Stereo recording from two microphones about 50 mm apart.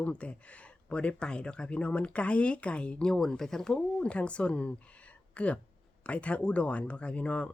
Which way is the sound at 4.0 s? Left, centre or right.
Left.